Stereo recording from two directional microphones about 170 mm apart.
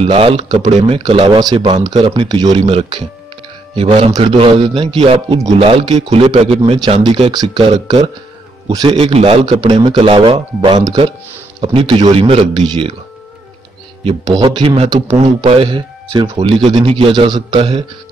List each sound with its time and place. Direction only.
0.0 s speech: 35° right (ahead or behind)
7.7 s speech: 40° right (ahead or behind)
8.6 s speech: 30° right (ahead or behind)
14.0 s speech: 25° right (ahead or behind)
15.0 s speech: 40° right (ahead or behind)